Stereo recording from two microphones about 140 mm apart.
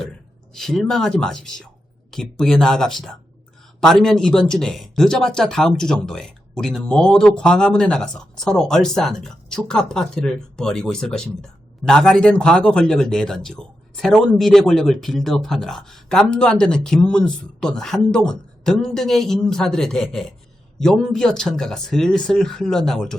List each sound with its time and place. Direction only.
0.5 s speech: 5° left (ahead or behind)